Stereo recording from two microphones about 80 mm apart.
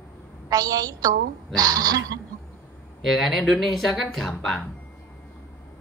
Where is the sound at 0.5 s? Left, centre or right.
Right.